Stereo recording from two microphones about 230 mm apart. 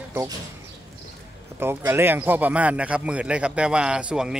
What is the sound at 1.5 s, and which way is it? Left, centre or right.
Speech, centre.